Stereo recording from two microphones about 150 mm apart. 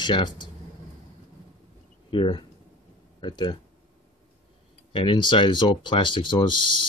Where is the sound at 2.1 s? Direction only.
35° left (ahead or behind).